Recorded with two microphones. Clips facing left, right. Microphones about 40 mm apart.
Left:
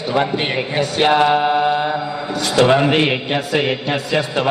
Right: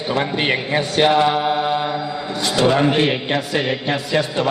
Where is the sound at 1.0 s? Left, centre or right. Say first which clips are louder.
Left 2 dB; left.